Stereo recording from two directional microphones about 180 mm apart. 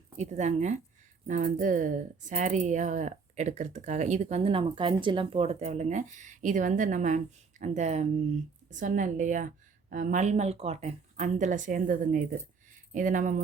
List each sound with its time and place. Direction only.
0.2 s a woman's voice: 40° right (ahead or behind)